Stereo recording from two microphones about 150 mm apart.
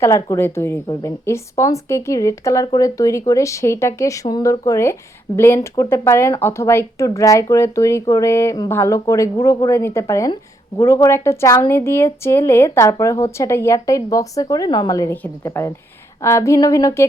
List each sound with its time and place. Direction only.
0.0 s a woman's voice: 20° left (ahead or behind)